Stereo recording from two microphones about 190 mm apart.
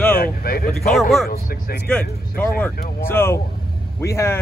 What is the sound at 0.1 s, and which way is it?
Vehicle, 50° left (ahead or behind).